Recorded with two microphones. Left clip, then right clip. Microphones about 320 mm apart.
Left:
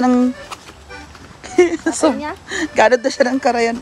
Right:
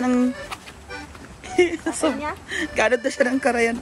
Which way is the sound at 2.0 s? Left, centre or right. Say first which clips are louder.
Left 6 dB; left.